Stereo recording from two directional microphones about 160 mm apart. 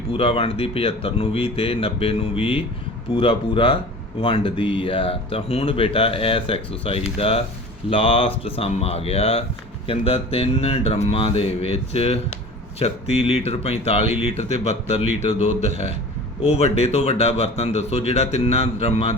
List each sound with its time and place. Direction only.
0.1 s a man's voice: 35° left (ahead or behind)